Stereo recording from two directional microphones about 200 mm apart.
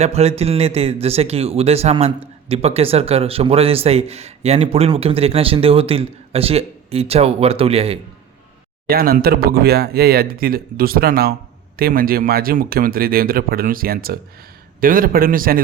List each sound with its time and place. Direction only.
0.0 s a sound: 30° right (ahead or behind)
1.0 s a man's voice: 30° right (ahead or behind)
8.9 s speech: 50° right (ahead or behind)